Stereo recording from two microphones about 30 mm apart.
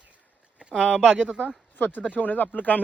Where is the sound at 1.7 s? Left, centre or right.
Left.